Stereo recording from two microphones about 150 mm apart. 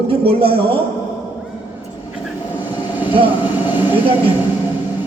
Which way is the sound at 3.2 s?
10° right (ahead or behind).